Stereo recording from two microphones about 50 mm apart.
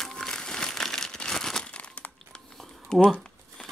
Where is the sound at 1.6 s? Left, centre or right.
Left.